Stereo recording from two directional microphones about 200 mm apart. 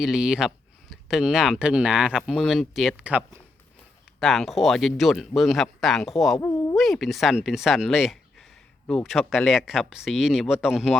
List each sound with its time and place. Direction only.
0.0 s speech: 5° right (ahead or behind)
6.4 s a sound: 15° left (ahead or behind)
6.7 s speech: centre (ahead or behind)